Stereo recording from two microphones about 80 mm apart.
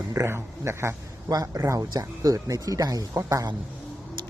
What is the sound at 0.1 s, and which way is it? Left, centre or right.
Speech, right.